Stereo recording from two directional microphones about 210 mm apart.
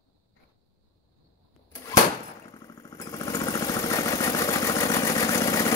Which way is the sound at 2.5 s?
15° left (ahead or behind).